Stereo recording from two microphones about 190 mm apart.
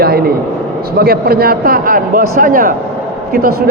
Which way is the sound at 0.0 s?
55° right (ahead or behind).